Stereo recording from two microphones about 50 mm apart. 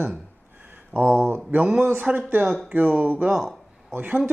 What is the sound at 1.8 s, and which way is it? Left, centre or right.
Speech, right.